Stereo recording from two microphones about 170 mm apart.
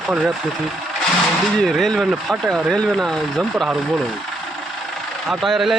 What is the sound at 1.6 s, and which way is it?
A man's voice, centre (ahead or behind).